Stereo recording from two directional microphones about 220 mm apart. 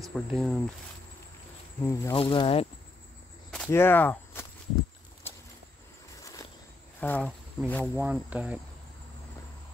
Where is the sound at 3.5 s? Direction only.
5° left (ahead or behind).